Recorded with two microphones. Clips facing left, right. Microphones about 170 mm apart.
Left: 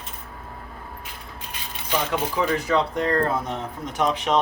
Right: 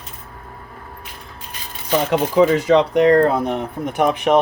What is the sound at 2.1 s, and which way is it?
Speech, 90° right.